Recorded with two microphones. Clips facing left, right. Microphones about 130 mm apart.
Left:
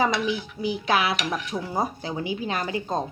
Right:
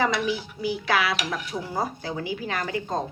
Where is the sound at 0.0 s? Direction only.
20° left (ahead or behind).